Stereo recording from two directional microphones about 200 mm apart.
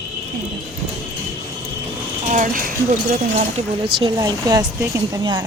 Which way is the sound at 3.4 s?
30° right (ahead or behind).